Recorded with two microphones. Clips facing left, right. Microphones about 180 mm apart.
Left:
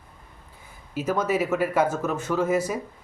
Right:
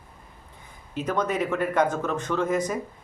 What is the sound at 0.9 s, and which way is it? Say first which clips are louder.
Speech: left 2 dB; 5° left (ahead or behind).